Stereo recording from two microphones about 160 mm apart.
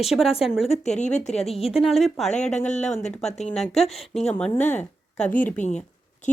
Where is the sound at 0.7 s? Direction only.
45° left (ahead or behind).